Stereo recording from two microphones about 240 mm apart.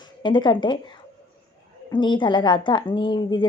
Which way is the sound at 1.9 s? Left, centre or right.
Centre.